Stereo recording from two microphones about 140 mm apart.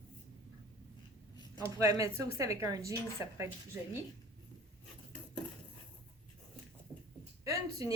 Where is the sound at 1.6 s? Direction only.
25° right (ahead or behind).